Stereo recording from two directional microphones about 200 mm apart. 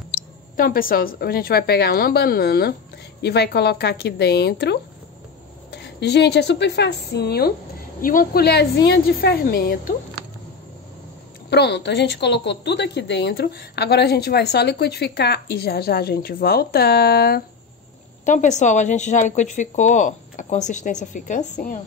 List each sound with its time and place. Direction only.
0.6 s a woman's voice: 45° left (ahead or behind)
11.5 s a woman's voice: 55° left (ahead or behind)
18.2 s a woman's voice: 40° left (ahead or behind)